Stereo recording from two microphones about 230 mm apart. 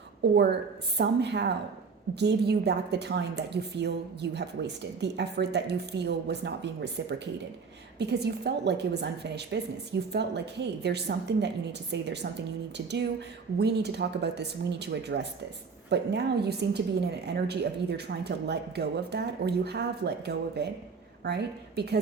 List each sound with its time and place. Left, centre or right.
0.2 s a woman's voice: right
7.9 s a woman's voice: right